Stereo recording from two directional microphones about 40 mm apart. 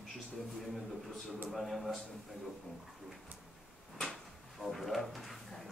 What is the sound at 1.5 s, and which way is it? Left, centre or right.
Speech, centre.